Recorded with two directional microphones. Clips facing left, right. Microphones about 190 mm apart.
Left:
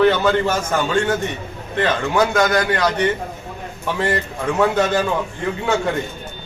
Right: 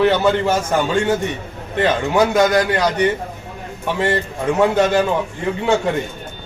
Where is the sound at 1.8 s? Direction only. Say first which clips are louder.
Right 2 dB; 15° right (ahead or behind).